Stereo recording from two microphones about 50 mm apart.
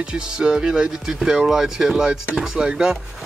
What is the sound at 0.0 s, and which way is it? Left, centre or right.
Speech, centre.